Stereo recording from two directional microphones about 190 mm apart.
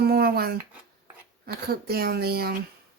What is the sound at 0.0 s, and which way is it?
Speech, 55° right (ahead or behind).